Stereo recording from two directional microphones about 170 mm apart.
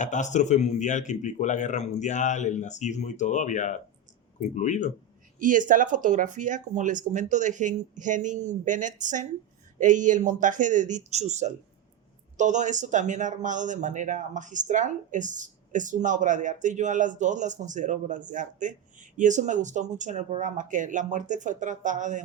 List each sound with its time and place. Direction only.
0.0 s speech: 45° left (ahead or behind)
5.4 s speech: 50° right (ahead or behind)